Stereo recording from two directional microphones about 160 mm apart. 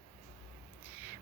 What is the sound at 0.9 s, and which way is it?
Crow, 10° right (ahead or behind).